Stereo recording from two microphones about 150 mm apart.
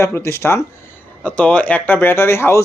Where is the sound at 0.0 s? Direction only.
15° left (ahead or behind).